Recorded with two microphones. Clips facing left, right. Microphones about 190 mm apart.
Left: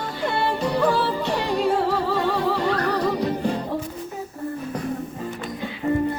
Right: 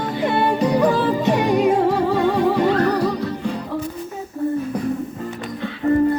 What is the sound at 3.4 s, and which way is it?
Music, 35° left (ahead or behind).